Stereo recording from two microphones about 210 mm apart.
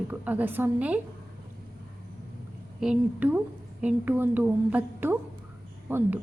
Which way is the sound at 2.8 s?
5° right (ahead or behind).